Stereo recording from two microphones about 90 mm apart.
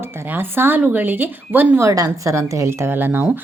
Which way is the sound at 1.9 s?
40° right (ahead or behind).